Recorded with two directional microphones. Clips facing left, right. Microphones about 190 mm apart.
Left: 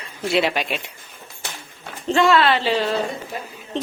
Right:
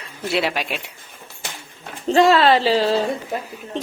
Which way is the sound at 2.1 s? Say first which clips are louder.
Right 3 dB; 35° right (ahead or behind).